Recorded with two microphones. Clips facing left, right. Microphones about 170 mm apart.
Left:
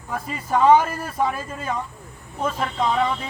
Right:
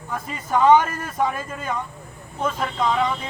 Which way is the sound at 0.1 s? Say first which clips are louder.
Even; 5° left (ahead or behind).